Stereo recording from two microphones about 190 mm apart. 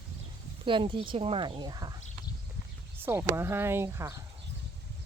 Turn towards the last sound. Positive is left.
turn(degrees=-15)  # may be behind; listen again after turning